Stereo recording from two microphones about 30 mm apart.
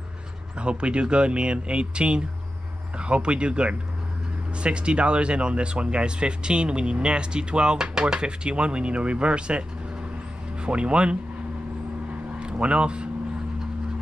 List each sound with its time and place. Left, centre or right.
0.6 s speech: right
12.4 s speech: right